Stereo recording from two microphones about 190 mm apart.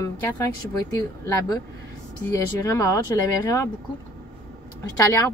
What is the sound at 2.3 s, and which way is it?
Speech, 20° left (ahead or behind).